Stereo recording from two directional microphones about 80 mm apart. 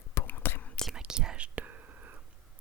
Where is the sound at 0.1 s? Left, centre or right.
Left.